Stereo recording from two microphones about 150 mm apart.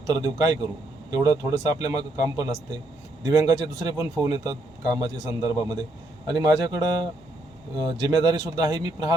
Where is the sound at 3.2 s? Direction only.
25° right (ahead or behind).